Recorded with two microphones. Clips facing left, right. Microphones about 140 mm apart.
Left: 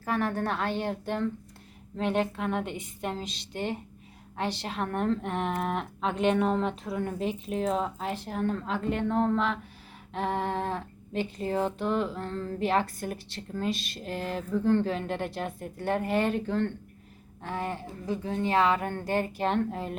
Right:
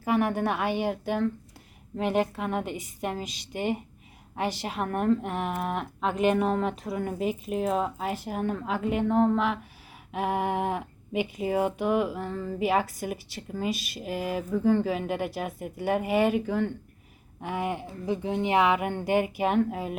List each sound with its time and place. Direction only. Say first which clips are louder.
0.0 s speech: right 4 dB; 15° right (ahead or behind)